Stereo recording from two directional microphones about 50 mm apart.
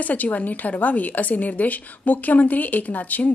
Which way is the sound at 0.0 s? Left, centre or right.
Left.